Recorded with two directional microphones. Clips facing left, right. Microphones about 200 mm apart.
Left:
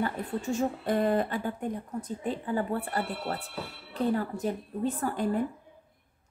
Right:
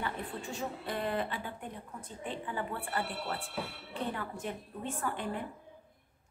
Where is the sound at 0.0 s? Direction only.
45° left (ahead or behind).